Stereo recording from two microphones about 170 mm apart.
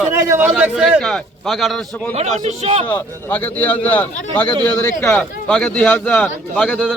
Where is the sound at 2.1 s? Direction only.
40° right (ahead or behind).